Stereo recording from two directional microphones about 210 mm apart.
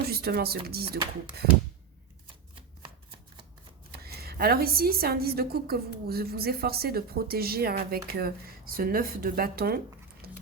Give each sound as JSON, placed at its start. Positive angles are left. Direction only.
{"t": 0.1, "sound": "a woman's voice", "side_deg": -45}
{"t": 4.0, "sound": "a woman's voice", "side_deg": -45}
{"t": 10.2, "sound": "music", "side_deg": -45}